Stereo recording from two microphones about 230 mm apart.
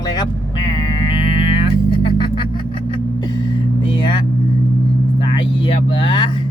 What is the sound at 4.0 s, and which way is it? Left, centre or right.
Vehicle, left.